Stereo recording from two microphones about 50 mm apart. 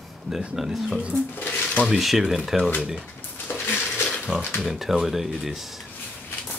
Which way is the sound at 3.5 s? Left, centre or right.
Left.